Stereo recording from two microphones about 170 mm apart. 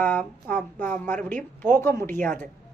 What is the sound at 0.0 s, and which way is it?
A woman's voice, 10° left (ahead or behind).